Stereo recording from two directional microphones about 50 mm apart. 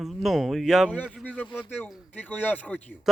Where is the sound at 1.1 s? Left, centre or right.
Left.